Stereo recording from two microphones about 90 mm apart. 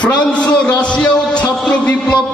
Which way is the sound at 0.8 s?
10° left (ahead or behind).